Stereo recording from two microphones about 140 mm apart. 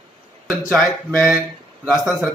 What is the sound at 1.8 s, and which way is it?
Speech, 5° right (ahead or behind).